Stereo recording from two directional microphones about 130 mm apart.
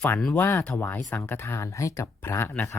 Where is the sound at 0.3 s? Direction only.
15° left (ahead or behind).